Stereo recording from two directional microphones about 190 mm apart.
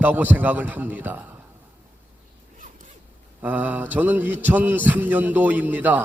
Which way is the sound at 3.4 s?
10° right (ahead or behind).